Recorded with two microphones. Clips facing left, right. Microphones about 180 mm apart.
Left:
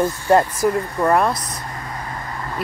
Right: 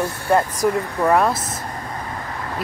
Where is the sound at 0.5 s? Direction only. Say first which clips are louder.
Left 1 dB; centre (ahead or behind).